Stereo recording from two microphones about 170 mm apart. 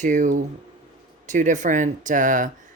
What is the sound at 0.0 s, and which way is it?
Speech, 45° right (ahead or behind).